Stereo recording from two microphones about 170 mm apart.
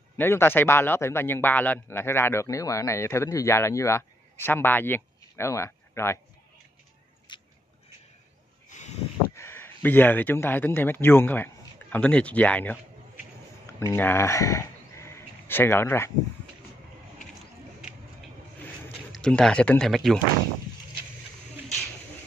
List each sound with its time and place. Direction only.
0.2 s a man's voice: 15° left (ahead or behind)
7.3 s biting: 25° left (ahead or behind)
8.6 s a sound: 45° left (ahead or behind)
9.3 s speech: 15° left (ahead or behind)
13.7 s speech: 15° left (ahead or behind)
19.1 s speech: 5° left (ahead or behind)